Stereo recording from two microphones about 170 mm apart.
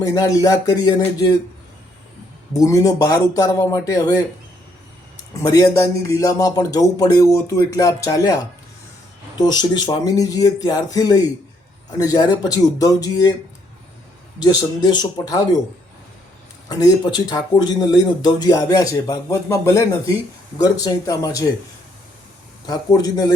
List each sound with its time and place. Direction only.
0.0 s speech: 20° left (ahead or behind)
2.5 s speech: 20° left (ahead or behind)
5.3 s speech: 20° left (ahead or behind)
9.4 s speech: 25° left (ahead or behind)
14.3 s speech: 25° left (ahead or behind)
16.6 s speech: 25° left (ahead or behind)
22.6 s speech: 20° left (ahead or behind)